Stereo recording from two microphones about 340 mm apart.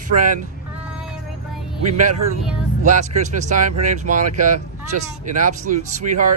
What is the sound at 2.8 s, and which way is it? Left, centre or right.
Speech, right.